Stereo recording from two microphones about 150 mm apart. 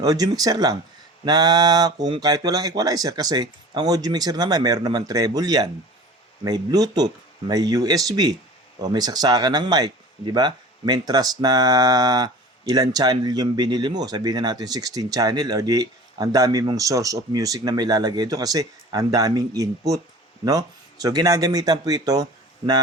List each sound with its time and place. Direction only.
0.0 s speech: 25° right (ahead or behind)